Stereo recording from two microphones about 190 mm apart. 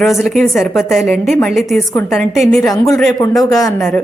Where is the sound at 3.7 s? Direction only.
5° left (ahead or behind).